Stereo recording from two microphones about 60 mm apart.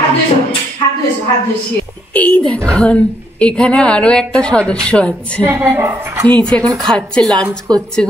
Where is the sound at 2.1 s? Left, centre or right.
Left.